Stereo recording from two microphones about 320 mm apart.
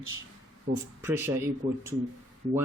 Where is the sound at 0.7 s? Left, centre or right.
Right.